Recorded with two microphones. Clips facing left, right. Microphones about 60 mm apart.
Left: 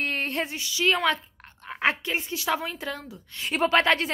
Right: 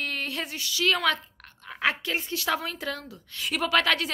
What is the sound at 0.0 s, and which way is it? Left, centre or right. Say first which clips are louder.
A woman's voice: left 4 dB; left.